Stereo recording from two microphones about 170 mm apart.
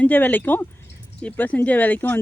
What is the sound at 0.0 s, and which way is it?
Speech, 10° left (ahead or behind).